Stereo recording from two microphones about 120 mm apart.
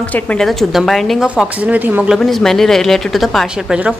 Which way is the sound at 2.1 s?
Centre (ahead or behind).